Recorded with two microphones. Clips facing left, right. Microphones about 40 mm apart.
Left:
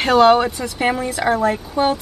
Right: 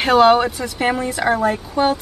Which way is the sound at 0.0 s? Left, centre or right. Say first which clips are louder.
Even; centre.